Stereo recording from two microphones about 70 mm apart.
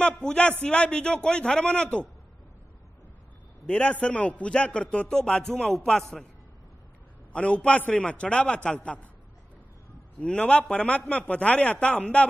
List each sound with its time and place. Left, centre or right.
0.2 s a man's voice: centre
3.6 s a man's voice: centre
7.3 s a man's voice: centre
10.2 s a man's voice: centre